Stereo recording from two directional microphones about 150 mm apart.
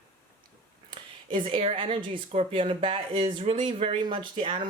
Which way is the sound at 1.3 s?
35° right (ahead or behind).